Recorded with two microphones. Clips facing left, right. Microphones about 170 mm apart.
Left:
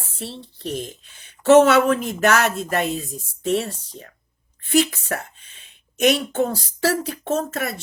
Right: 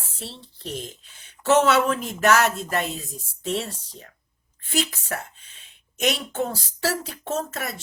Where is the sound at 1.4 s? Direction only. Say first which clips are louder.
Left 6 dB; 55° left (ahead or behind).